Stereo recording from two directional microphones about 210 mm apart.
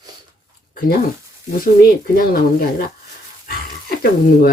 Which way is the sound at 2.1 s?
45° left (ahead or behind).